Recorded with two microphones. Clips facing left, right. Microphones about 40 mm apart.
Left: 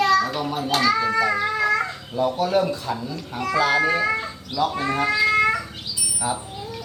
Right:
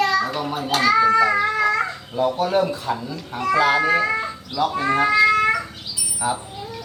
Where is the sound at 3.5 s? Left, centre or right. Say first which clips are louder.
Right 2 dB; right.